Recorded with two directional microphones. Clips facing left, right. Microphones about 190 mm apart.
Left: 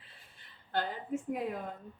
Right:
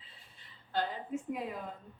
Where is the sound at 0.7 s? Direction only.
50° left (ahead or behind).